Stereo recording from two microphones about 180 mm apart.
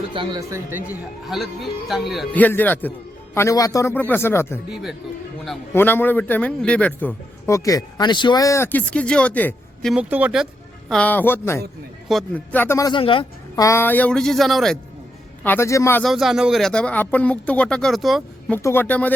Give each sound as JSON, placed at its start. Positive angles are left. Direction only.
{"t": 0.1, "sound": "speech", "side_deg": -25}
{"t": 1.3, "sound": "a man's voice", "side_deg": 0}
{"t": 4.7, "sound": "speech", "side_deg": 0}
{"t": 5.7, "sound": "a man's voice", "side_deg": 10}
{"t": 9.9, "sound": "a man's voice", "side_deg": -10}
{"t": 13.7, "sound": "speech", "side_deg": 10}
{"t": 15.4, "sound": "a man's voice", "side_deg": 15}
{"t": 16.0, "sound": "speech", "side_deg": 0}
{"t": 18.5, "sound": "a man's voice", "side_deg": 10}